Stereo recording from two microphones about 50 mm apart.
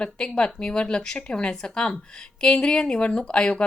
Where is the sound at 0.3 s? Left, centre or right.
Centre.